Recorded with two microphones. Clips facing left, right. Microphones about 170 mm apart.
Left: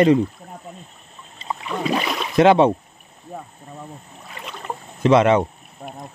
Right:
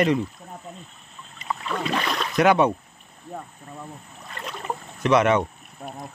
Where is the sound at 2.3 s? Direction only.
25° left (ahead or behind).